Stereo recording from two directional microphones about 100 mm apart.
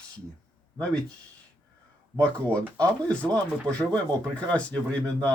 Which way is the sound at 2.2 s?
10° left (ahead or behind).